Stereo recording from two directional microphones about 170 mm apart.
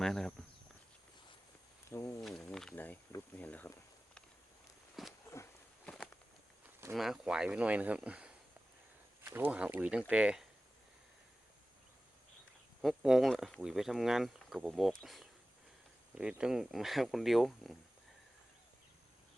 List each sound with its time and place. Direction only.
0.0 s speech: 5° left (ahead or behind)
1.9 s speech: 15° left (ahead or behind)
2.2 s speech: 5° left (ahead or behind)
5.2 s a sound: 15° left (ahead or behind)
6.9 s speech: centre (ahead or behind)
12.8 s speech: centre (ahead or behind)